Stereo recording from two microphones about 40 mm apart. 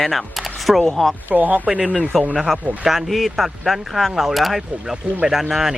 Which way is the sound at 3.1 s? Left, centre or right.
Centre.